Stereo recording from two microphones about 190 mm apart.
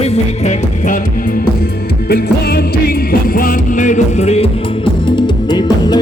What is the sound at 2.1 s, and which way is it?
Music, 55° left (ahead or behind).